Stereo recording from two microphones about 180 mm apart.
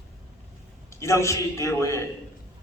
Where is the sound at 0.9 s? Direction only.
15° left (ahead or behind).